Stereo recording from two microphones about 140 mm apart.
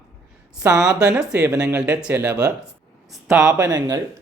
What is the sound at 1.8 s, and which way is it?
Speech, 10° right (ahead or behind).